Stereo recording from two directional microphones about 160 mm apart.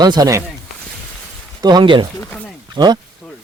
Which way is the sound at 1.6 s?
30° right (ahead or behind).